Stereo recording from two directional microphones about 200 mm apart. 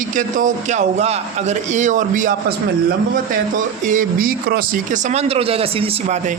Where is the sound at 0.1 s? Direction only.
40° right (ahead or behind).